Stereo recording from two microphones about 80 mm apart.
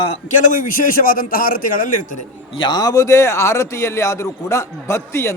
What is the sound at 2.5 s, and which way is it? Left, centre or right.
Speech, left.